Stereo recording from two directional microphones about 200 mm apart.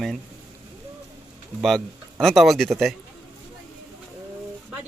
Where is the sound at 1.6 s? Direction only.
Centre (ahead or behind).